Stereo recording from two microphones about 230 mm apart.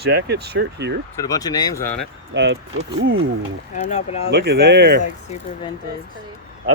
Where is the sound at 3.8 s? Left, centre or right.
Left.